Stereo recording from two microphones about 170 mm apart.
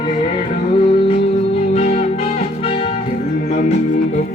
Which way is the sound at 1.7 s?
40° left (ahead or behind).